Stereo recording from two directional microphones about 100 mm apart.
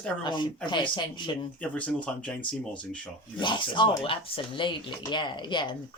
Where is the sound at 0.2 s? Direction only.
50° left (ahead or behind).